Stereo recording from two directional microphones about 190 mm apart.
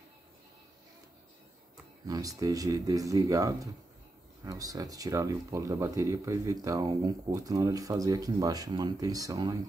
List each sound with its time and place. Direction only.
2.0 s speech: 20° right (ahead or behind)